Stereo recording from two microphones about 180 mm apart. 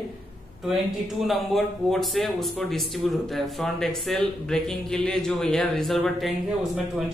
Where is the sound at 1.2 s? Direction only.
Centre (ahead or behind).